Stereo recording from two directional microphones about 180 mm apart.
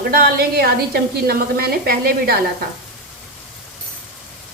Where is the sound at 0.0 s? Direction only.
60° right (ahead or behind).